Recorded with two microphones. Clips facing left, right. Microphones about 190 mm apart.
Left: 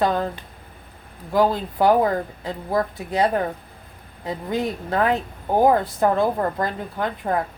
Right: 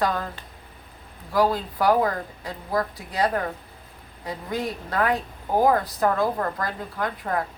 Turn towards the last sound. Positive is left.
turn(degrees=25)  # may be behind; listen again after turning